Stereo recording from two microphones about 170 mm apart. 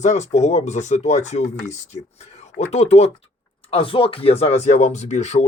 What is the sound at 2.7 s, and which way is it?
Speech, 40° left (ahead or behind).